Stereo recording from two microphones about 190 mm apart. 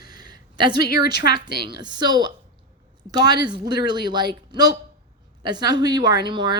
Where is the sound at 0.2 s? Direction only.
20° right (ahead or behind).